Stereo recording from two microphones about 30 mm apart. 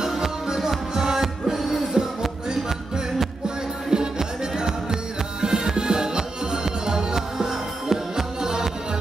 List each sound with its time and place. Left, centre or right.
0.0 s music: centre
2.0 s music: right
3.4 s music: right